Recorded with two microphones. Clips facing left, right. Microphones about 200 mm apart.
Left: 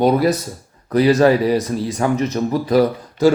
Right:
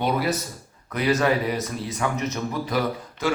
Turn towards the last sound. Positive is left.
turn(degrees=35)  # may be behind; listen again after turning